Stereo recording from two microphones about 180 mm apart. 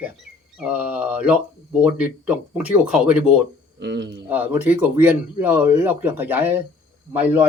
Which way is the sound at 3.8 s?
80° right.